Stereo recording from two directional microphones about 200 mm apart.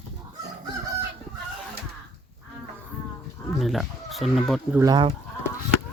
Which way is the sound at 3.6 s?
Centre (ahead or behind).